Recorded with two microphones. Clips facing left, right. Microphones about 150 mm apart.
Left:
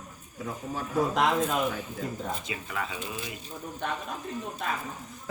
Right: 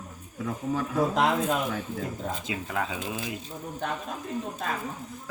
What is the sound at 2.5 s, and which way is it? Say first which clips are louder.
Speech: right 4 dB; 90° right.